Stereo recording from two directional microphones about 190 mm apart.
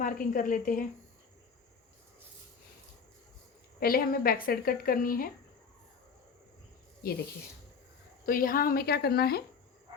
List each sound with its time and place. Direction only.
0.0 s speech: 45° left (ahead or behind)
3.8 s speech: 50° left (ahead or behind)
8.3 s a woman's voice: 50° left (ahead or behind)